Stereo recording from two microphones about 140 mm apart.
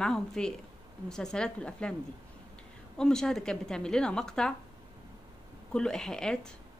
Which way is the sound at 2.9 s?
5° left (ahead or behind).